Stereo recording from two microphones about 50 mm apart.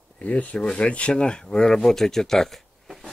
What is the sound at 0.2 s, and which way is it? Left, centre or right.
Speech, left.